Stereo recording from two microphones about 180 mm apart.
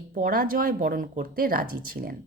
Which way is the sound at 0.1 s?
50° right (ahead or behind).